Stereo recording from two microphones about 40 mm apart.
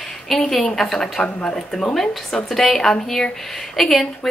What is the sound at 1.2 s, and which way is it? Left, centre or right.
Speech, left.